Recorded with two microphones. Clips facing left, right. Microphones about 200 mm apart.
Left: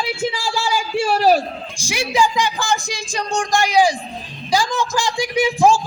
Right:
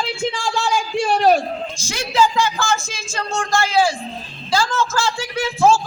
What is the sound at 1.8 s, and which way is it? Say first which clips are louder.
A man's voice: even; 15° left (ahead or behind).